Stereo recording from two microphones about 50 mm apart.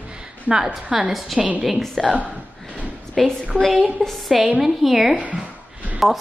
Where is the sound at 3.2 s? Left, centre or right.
Centre.